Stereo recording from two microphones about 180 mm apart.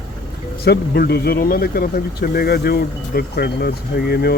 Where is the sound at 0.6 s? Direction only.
60° left (ahead or behind).